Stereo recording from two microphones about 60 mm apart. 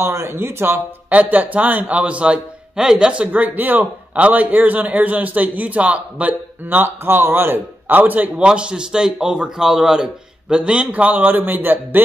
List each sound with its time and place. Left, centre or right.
0.0 s speech: right
1.1 s a man's voice: right
3.3 s speech: right
8.4 s a man's voice: centre; by 12.0 s right